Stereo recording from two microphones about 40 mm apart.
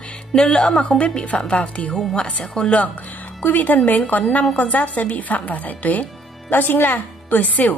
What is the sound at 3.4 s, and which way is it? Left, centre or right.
A woman's voice, left.